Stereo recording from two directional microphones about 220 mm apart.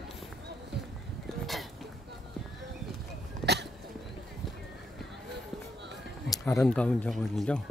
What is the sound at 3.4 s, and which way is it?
Cough, centre (ahead or behind).